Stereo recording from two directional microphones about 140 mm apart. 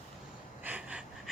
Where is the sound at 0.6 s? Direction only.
10° right (ahead or behind).